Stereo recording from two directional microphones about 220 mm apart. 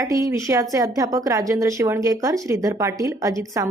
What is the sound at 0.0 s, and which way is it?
A woman's voice, 15° right (ahead or behind).